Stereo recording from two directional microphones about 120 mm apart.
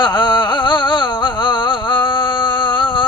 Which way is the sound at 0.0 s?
40° left (ahead or behind).